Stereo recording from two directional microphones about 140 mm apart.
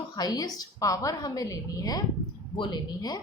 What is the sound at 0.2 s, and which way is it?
A woman's voice, 30° left (ahead or behind).